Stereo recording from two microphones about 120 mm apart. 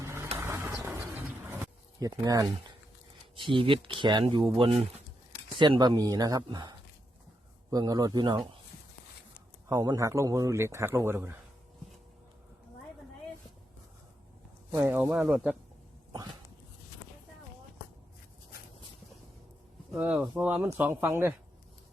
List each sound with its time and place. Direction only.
0.0 s a sound: 20° right (ahead or behind)
0.3 s vehicle: 20° right (ahead or behind)
0.8 s pigeon: 15° right (ahead or behind)
3.3 s speech: 45° right (ahead or behind)
9.6 s a man's voice: 30° right (ahead or behind)
14.7 s speech: 15° right (ahead or behind)
15.1 s speech: 5° right (ahead or behind)
20.3 s a man's voice: 15° right (ahead or behind)